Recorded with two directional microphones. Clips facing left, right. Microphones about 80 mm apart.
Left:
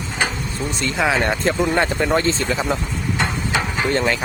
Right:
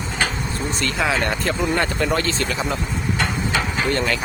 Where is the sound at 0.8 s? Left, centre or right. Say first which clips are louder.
Left 3 dB; left.